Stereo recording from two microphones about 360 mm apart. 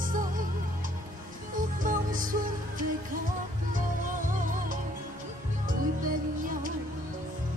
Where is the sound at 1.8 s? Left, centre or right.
Right.